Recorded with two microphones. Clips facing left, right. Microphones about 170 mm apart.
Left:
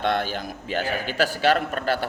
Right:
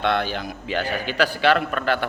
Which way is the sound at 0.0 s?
45° left (ahead or behind).